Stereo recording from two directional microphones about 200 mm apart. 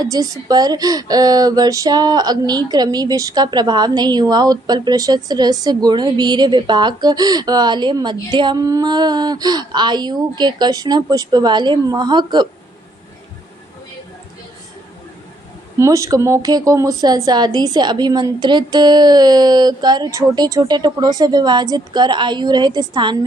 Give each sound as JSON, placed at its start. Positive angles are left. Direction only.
{"t": 0.0, "sound": "speech", "side_deg": -20}
{"t": 15.8, "sound": "speech", "side_deg": -15}